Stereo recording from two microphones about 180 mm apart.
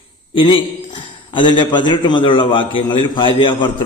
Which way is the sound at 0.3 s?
25° left (ahead or behind).